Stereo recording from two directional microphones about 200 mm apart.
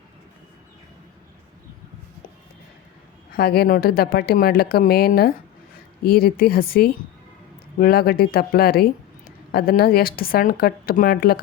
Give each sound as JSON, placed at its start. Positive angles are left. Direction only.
{"t": 3.3, "sound": "speech", "side_deg": 50}